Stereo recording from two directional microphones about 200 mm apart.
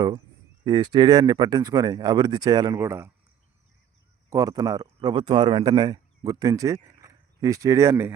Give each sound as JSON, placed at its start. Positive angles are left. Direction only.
{"t": 0.6, "sound": "speech", "side_deg": -20}
{"t": 4.3, "sound": "speech", "side_deg": -15}